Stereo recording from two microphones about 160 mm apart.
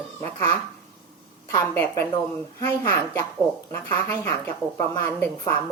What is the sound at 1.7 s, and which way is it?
A woman's voice, 15° left (ahead or behind).